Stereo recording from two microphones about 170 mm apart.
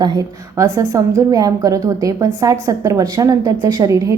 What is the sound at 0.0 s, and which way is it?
A woman's voice, 25° right (ahead or behind).